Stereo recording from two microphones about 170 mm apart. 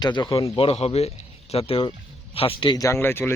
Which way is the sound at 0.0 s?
25° left (ahead or behind).